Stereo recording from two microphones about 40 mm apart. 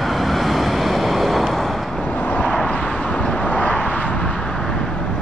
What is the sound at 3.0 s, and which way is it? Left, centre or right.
Vehicle, left.